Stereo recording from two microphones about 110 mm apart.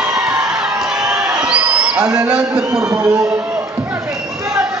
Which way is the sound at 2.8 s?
35° right (ahead or behind).